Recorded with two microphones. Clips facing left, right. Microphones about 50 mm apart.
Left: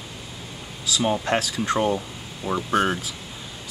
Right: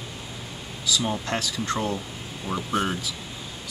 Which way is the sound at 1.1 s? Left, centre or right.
Left.